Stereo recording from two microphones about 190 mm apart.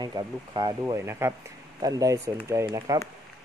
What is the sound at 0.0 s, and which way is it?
Speech, 20° right (ahead or behind).